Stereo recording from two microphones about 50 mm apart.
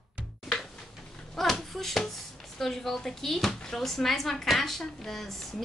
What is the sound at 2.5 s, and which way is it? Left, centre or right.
A woman's voice, centre.